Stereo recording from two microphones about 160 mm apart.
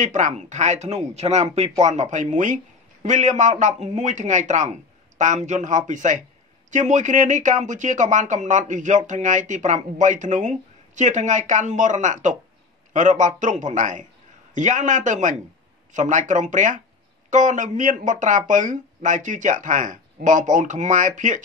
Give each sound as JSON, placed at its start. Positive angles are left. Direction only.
{"t": 0.0, "sound": "speech", "side_deg": -50}